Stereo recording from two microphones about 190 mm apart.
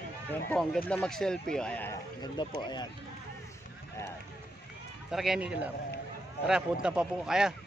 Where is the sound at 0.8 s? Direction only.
5° left (ahead or behind).